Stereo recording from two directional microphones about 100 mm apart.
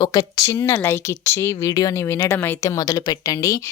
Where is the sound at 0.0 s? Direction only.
40° left (ahead or behind).